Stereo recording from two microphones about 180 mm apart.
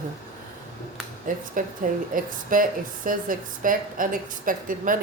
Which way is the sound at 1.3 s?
50° right (ahead or behind).